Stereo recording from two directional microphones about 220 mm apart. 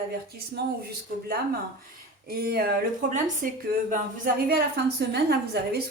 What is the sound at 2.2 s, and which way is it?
A woman's voice, 45° right (ahead or behind).